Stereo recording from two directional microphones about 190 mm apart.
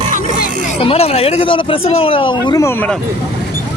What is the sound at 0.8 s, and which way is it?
Speech, 30° left (ahead or behind).